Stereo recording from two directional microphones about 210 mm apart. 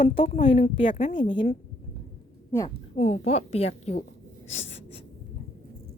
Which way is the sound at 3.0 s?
30° left (ahead or behind).